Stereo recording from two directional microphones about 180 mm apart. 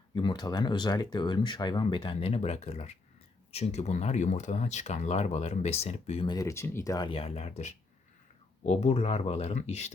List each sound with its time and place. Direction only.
0.1 s speech: 25° left (ahead or behind)